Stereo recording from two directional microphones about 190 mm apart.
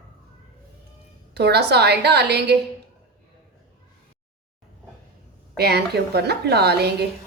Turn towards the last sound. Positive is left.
turn(degrees=-60)  # may be behind; listen again after turning